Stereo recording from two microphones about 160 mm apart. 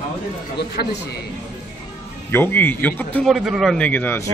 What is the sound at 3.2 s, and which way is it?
Speech, centre (ahead or behind).